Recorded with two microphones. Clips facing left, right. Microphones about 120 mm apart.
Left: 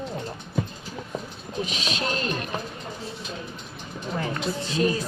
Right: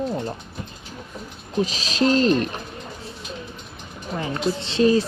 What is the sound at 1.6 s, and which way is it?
Speech, 35° right (ahead or behind).